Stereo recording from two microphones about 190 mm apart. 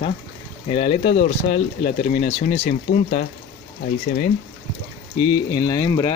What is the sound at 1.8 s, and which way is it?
Speech, 45° left (ahead or behind).